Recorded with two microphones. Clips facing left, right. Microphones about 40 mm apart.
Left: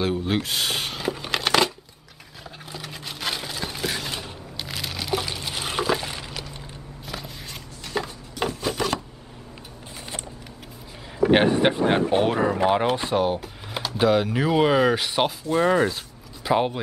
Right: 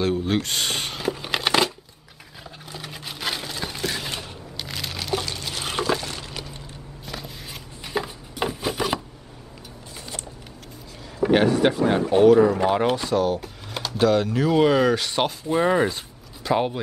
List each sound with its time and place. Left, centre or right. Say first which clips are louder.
0.0 s shuffling cards: right 1 dB; centre
2.4 s a sound: left 1 dB; centre
7.1 s a sound: even; centre
7.8 s chopping: right 1 dB; centre
11.3 s a man's voice: right 1 dB; left
12.5 s speech: left 1 dB; centre
12.9 s a man's voice: right 1 dB; left
13.7 s speech: right 1 dB; centre
15.5 s speech: even; centre
16.4 s speech: left 1 dB; centre